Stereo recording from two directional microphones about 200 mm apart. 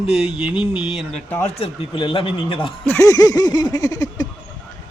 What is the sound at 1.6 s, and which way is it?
Speech, 25° left (ahead or behind).